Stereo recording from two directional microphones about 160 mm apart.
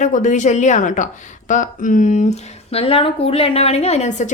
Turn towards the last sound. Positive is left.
turn(degrees=50)  # may be behind; listen again after turning